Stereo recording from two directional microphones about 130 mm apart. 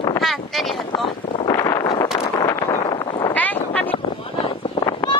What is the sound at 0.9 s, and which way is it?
Speech, 45° left (ahead or behind).